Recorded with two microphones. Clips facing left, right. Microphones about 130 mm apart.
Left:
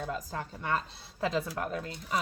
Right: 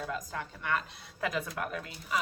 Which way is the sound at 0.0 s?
35° left (ahead or behind).